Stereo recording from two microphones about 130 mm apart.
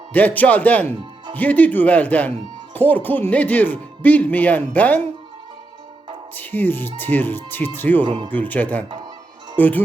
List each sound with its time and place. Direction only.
0.1 s speech: 10° left (ahead or behind)
6.3 s speech: 15° left (ahead or behind)
8.0 s speech: 35° right (ahead or behind)
8.3 s speech: 15° left (ahead or behind)